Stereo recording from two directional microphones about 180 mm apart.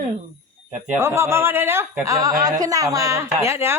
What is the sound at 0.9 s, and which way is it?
Speech, 15° right (ahead or behind).